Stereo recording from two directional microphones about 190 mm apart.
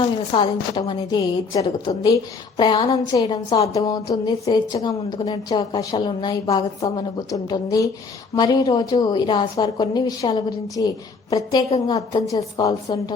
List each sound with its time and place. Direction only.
0.0 s a woman's voice: 25° left (ahead or behind)